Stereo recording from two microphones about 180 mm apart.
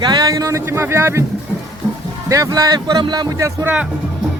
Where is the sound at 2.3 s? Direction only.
20° right (ahead or behind).